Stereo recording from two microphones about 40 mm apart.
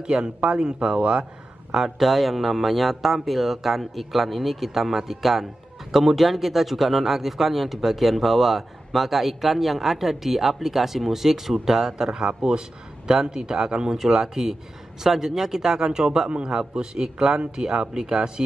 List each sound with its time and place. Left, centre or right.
0.0 s a man's voice: right
1.7 s a man's voice: centre
16.3 s a man's voice: right